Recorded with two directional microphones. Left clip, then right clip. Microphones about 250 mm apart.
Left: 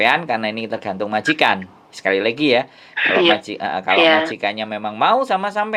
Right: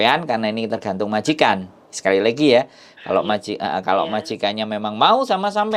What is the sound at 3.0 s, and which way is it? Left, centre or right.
Speech, left.